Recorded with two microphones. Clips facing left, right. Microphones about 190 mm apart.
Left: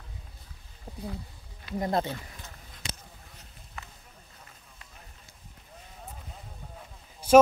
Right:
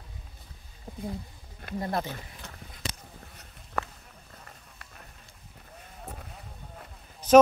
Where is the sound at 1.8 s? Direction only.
25° left (ahead or behind).